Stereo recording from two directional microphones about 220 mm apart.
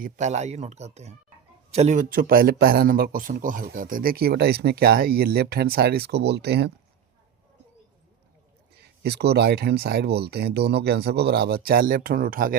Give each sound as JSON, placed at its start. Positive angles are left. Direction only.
{"t": 0.0, "sound": "a man's voice", "side_deg": -30}
{"t": 8.7, "sound": "a man's voice", "side_deg": -50}